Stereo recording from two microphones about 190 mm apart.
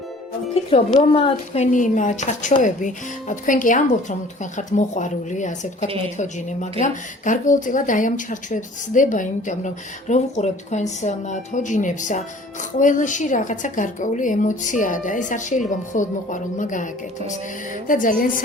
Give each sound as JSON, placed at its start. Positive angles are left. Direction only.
{"t": 0.7, "sound": "a woman's voice", "side_deg": 30}